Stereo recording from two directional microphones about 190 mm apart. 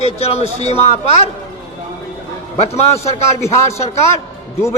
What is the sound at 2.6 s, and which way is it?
Speech, 35° left (ahead or behind).